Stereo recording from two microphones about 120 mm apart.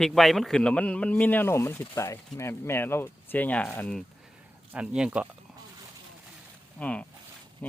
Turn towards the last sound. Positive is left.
turn(degrees=10)  # may be behind; listen again after turning